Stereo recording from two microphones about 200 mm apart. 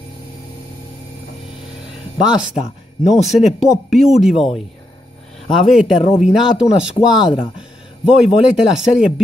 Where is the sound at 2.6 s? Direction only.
35° left (ahead or behind).